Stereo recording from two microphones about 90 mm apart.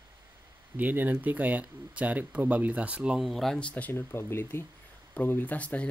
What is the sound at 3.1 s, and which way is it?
Speech, centre (ahead or behind).